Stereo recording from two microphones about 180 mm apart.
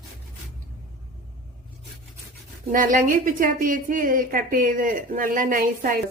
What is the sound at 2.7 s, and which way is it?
A woman's voice, 50° right (ahead or behind).